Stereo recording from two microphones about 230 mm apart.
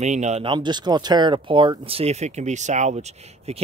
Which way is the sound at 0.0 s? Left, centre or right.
Right.